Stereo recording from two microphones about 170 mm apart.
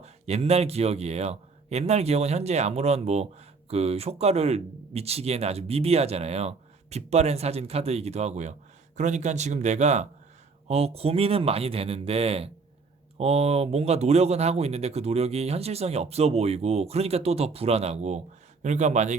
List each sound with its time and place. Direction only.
0.0 s speech: 40° right (ahead or behind)